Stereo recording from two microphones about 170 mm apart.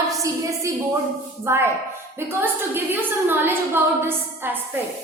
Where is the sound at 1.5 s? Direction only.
15° right (ahead or behind).